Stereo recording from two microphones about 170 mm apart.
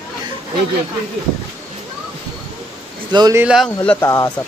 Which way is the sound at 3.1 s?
25° right (ahead or behind).